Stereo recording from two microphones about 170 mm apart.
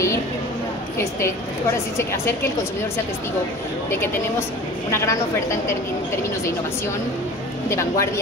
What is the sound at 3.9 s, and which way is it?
Speech, 15° left (ahead or behind).